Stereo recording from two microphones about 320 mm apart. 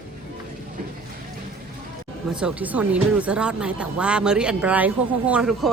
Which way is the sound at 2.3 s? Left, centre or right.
Centre.